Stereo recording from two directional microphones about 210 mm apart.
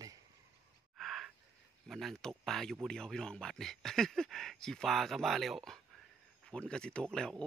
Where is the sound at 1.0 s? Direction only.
Centre (ahead or behind).